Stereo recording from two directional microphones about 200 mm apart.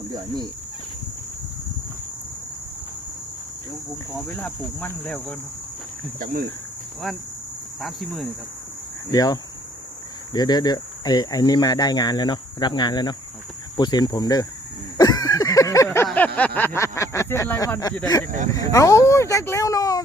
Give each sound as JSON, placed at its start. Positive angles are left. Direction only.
{"t": 4.2, "sound": "speech", "side_deg": 5}
{"t": 6.1, "sound": "speech", "side_deg": -45}
{"t": 7.8, "sound": "speech", "side_deg": 0}
{"t": 9.1, "sound": "speech", "side_deg": 20}
{"t": 14.9, "sound": "a sound", "side_deg": 20}
{"t": 16.6, "sound": "speech", "side_deg": 10}